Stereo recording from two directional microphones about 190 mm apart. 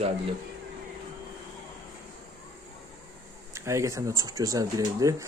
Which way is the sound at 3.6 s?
15° right (ahead or behind).